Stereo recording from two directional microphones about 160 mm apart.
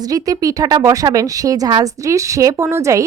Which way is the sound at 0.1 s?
25° right (ahead or behind).